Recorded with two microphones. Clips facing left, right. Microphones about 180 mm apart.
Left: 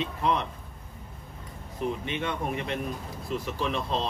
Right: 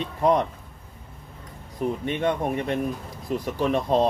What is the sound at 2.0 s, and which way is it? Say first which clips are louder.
Speech: right 6 dB; 45° right (ahead or behind).